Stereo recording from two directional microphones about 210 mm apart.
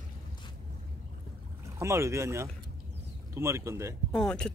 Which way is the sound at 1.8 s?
15° right (ahead or behind).